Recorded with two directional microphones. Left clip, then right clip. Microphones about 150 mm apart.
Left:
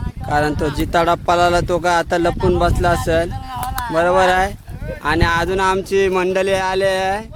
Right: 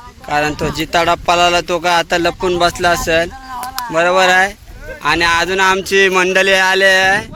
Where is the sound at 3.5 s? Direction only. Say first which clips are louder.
Right 1 dB; 5° right (ahead or behind).